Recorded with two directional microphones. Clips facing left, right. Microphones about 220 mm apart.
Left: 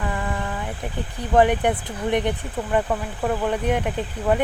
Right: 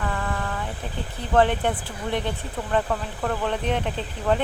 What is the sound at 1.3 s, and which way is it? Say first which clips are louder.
Speech: left 3 dB; 15° left (ahead or behind).